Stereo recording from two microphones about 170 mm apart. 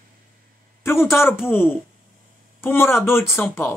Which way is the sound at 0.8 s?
15° left (ahead or behind).